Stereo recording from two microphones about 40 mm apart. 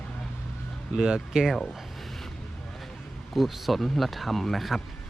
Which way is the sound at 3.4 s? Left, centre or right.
Centre.